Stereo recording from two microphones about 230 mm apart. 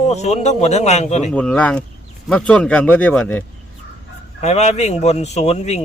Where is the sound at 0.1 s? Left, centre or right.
Left.